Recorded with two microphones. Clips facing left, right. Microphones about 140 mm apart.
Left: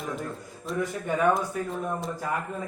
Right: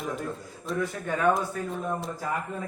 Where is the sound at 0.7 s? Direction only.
Centre (ahead or behind).